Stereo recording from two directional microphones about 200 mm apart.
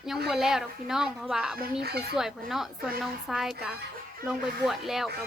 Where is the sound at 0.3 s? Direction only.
Centre (ahead or behind).